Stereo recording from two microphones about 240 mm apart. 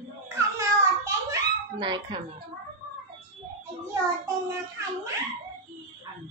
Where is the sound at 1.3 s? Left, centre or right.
Centre.